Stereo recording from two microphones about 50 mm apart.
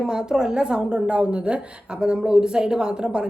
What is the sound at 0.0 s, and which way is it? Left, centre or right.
Speech, centre.